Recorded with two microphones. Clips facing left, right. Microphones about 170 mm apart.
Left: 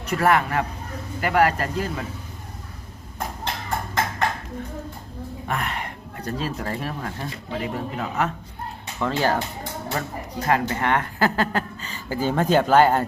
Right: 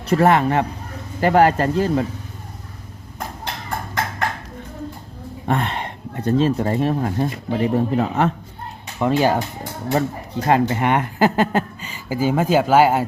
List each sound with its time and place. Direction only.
0.0 s speech: 30° right (ahead or behind)
5.5 s speech: 30° right (ahead or behind)
9.0 s speech: 15° right (ahead or behind)